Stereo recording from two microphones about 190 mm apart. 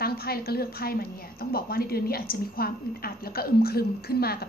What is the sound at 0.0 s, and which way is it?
A woman's voice, 55° left (ahead or behind).